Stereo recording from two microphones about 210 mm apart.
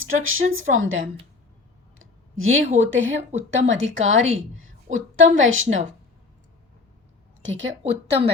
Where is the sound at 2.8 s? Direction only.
65° right (ahead or behind).